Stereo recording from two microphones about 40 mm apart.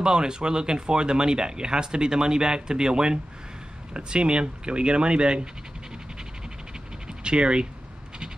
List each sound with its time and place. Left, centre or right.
0.0 s speech: centre
7.2 s speech: right